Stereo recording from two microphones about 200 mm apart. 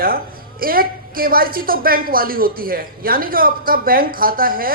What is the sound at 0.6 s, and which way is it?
A woman's voice, 45° right (ahead or behind).